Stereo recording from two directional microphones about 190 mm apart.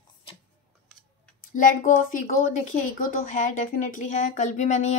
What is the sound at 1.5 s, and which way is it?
A woman's voice, 45° left (ahead or behind).